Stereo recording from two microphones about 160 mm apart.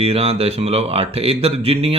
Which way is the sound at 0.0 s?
40° right (ahead or behind).